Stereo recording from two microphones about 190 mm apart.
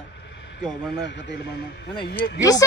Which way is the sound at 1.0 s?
65° left (ahead or behind).